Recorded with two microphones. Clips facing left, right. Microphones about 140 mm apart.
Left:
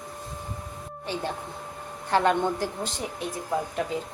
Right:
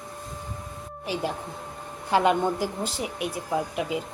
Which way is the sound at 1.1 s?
10° right (ahead or behind).